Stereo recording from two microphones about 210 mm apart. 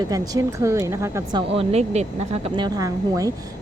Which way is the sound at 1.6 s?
30° right (ahead or behind).